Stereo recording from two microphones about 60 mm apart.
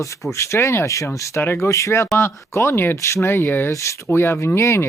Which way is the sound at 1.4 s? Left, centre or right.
Left.